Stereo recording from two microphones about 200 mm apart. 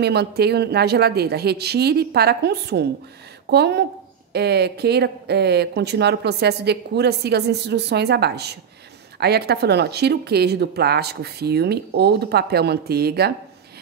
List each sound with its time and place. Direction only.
0.0 s speech: 55° right (ahead or behind)